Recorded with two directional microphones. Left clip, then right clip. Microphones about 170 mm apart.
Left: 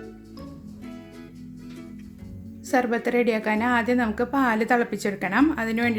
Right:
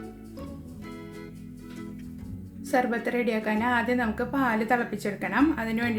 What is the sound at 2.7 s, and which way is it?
A woman's voice, 40° left (ahead or behind).